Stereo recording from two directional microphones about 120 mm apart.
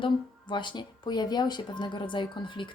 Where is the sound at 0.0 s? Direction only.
40° left (ahead or behind).